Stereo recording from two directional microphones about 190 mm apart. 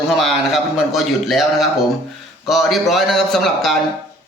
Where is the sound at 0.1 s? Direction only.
Centre (ahead or behind).